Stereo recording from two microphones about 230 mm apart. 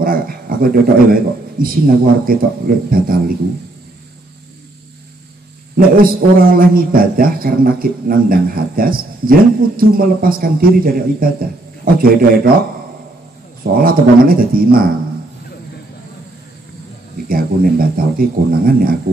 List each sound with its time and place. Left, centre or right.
0.0 s a man's voice: right
5.8 s a man's voice: right
13.7 s a man's voice: right
17.3 s a man's voice: right